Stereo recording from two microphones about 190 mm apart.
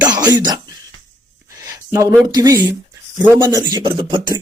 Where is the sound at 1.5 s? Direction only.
15° right (ahead or behind).